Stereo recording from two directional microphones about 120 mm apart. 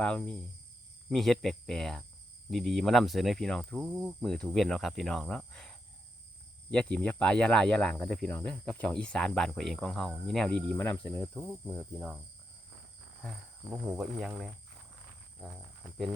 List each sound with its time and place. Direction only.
0.0 s speech: 10° left (ahead or behind)
11.3 s cricket: 10° right (ahead or behind)
11.7 s speech: 5° left (ahead or behind)
13.7 s cricket: 15° right (ahead or behind)
14.0 s speech: 5° right (ahead or behind)